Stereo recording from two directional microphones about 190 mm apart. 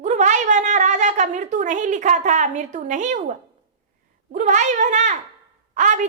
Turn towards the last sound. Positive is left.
turn(degrees=-40)  # may be behind; listen again after turning